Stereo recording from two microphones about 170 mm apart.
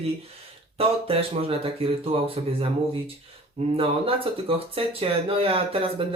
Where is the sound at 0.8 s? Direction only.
35° right (ahead or behind).